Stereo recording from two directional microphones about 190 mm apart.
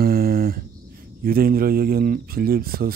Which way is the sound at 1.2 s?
50° right (ahead or behind).